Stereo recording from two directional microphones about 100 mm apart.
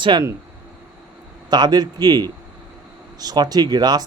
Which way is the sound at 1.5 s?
45° right (ahead or behind).